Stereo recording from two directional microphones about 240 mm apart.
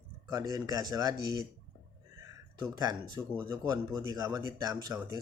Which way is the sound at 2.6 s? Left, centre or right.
Centre.